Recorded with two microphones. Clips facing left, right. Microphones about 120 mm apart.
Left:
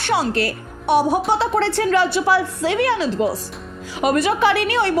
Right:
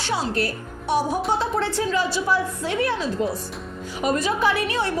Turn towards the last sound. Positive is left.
turn(degrees=70)  # may be behind; listen again after turning